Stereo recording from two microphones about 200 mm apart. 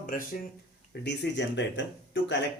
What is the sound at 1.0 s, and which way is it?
Speech, 60° left (ahead or behind).